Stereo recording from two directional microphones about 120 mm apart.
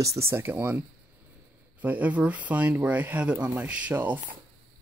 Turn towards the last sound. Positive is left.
turn(degrees=-15)  # may be behind; listen again after turning